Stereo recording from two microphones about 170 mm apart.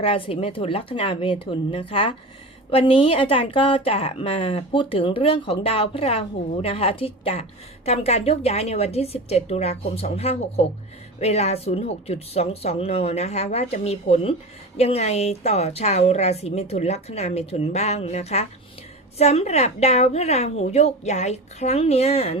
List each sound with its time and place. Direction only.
0.0 s a woman's voice: 35° left (ahead or behind)